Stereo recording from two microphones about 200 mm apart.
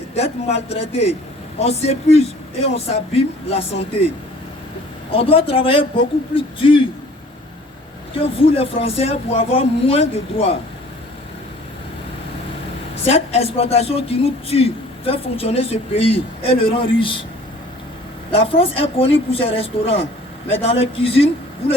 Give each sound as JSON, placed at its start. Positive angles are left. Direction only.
{"t": 0.1, "sound": "speech", "side_deg": 35}
{"t": 5.1, "sound": "a man's voice", "side_deg": 30}
{"t": 8.4, "sound": "a man's voice", "side_deg": 30}
{"t": 13.1, "sound": "a man's voice", "side_deg": 30}
{"t": 18.3, "sound": "a man's voice", "side_deg": 30}